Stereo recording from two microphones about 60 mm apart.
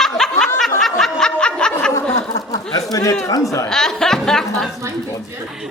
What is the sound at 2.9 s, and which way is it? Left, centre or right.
Speech, left.